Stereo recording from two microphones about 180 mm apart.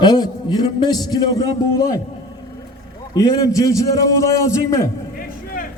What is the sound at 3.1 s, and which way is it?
A man's voice, 20° left (ahead or behind).